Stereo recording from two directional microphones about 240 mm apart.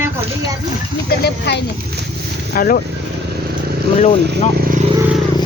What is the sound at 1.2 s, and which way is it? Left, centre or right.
Speech, left.